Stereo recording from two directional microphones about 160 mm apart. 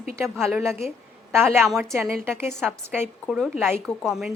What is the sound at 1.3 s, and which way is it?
Speech, 15° right (ahead or behind).